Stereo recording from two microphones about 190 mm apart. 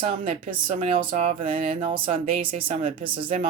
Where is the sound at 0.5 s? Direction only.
25° right (ahead or behind).